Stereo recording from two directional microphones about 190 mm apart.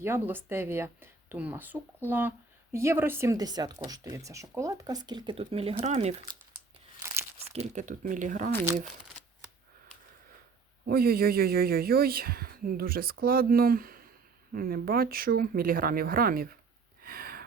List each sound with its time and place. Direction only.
0.0 s speech: 10° right (ahead or behind); by 6.3 s 35° right (ahead or behind)
7.0 s crumpling: 15° right (ahead or behind)
7.3 s speech: 35° right (ahead or behind)
10.8 s speech: 50° right (ahead or behind)
17.0 s a sound: 50° right (ahead or behind)